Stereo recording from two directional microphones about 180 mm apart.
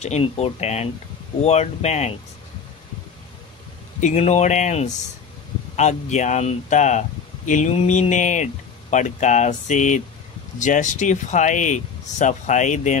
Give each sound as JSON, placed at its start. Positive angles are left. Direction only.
{"t": 0.0, "sound": "speech", "side_deg": 35}
{"t": 4.0, "sound": "speech", "side_deg": 40}